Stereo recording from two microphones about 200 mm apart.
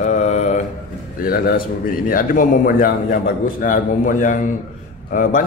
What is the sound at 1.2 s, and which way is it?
A man's voice, 45° left (ahead or behind).